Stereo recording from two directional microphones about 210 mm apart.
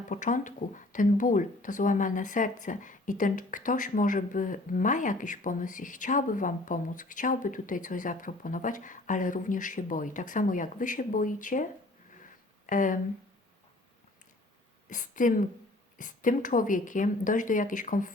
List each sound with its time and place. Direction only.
0.1 s speech: 35° left (ahead or behind)
14.8 s speech: 40° left (ahead or behind)